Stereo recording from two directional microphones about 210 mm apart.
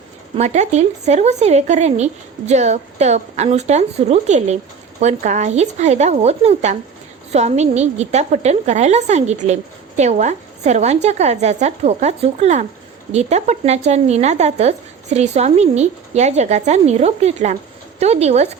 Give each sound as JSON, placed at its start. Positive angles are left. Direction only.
{"t": 0.3, "sound": "speech", "side_deg": -35}